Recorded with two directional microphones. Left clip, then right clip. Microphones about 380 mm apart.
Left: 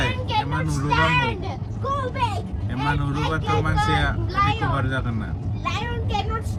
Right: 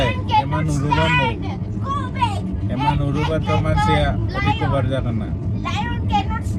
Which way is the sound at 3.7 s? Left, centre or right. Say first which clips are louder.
Right 5 dB; centre.